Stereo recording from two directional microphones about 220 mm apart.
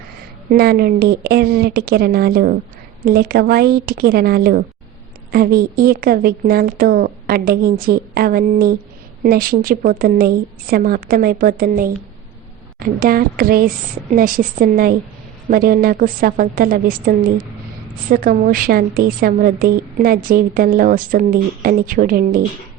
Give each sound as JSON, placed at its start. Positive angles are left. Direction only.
{"t": 0.5, "sound": "a woman's voice", "side_deg": -45}